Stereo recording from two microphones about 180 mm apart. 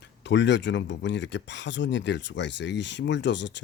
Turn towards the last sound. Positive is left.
turn(degrees=80)